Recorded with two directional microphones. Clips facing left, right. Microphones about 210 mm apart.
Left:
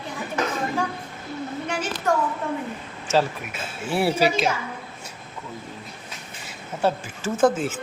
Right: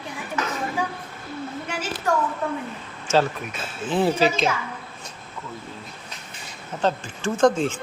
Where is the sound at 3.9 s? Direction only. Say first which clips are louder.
Right 1 dB; 10° left (ahead or behind).